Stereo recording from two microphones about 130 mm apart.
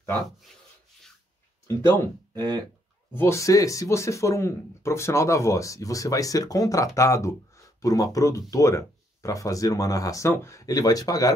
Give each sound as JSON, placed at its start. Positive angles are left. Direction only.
{"t": 1.7, "sound": "speech", "side_deg": 20}